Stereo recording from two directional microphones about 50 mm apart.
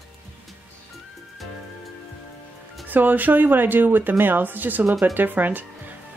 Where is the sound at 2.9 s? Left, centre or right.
Right.